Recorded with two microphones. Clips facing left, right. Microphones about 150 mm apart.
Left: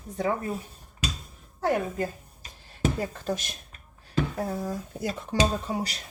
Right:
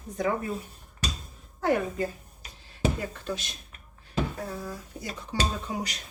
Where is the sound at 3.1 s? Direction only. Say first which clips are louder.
Left 3 dB; 40° left (ahead or behind).